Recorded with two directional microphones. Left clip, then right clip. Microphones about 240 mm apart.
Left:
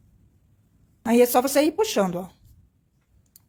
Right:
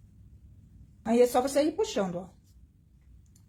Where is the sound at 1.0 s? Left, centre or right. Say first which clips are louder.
Left 5 dB; left.